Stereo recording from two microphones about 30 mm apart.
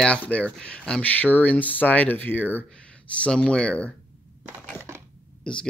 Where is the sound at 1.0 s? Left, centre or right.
Left.